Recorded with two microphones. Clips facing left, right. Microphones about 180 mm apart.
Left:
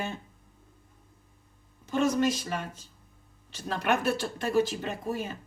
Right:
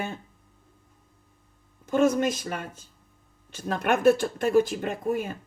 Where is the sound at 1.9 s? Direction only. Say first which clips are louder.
Right 3 dB; 50° right (ahead or behind).